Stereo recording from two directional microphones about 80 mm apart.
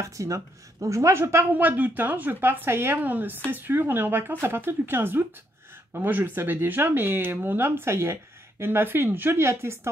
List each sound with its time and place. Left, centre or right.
0.0 s speech: right